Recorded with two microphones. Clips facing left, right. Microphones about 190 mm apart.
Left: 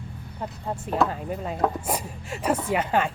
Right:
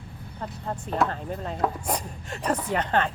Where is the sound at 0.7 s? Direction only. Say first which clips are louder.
Left 2 dB; 10° left (ahead or behind).